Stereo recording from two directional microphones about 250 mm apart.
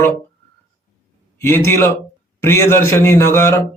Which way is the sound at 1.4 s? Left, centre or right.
Centre.